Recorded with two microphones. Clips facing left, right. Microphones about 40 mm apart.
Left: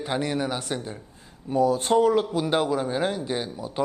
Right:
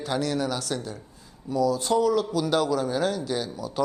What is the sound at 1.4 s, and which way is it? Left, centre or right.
A man's voice, left.